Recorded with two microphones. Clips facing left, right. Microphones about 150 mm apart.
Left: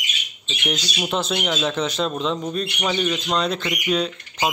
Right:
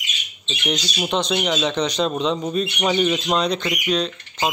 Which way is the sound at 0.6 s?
5° left (ahead or behind).